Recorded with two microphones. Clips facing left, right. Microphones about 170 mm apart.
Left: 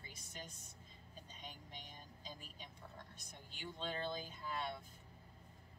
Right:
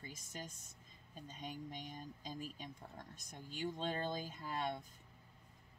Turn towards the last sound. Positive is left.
turn(degrees=-45)  # may be behind; listen again after turning